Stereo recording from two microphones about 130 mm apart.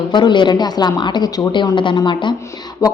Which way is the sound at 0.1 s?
35° left (ahead or behind).